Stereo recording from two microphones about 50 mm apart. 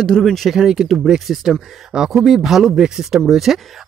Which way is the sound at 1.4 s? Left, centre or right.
Centre.